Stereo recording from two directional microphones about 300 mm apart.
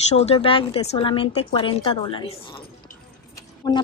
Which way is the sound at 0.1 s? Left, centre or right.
Left.